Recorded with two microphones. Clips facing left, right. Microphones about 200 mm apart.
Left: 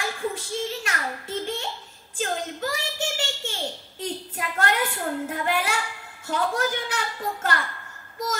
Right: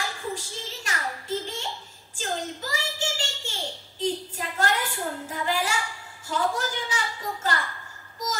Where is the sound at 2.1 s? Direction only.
55° left (ahead or behind).